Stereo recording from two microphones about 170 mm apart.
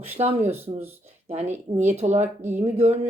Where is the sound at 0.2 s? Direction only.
40° right (ahead or behind).